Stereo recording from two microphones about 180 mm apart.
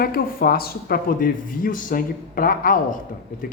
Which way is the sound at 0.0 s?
55° left (ahead or behind).